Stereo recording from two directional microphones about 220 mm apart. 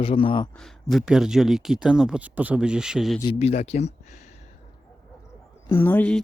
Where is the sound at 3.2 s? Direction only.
25° left (ahead or behind).